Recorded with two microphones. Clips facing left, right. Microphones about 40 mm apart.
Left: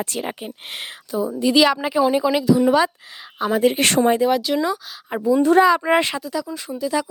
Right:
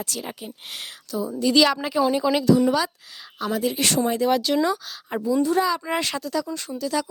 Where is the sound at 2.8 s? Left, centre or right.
Left.